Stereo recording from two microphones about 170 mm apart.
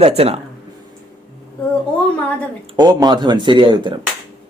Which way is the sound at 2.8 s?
25° right (ahead or behind).